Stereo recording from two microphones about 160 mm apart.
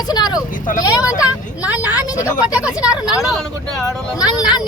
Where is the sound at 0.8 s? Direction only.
25° left (ahead or behind).